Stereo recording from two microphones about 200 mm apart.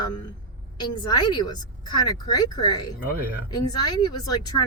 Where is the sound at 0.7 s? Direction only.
20° left (ahead or behind).